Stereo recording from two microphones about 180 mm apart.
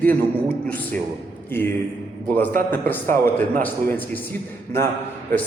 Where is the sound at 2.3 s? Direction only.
10° left (ahead or behind).